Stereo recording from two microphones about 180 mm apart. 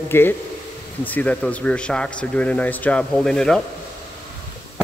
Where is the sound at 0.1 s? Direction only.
10° left (ahead or behind).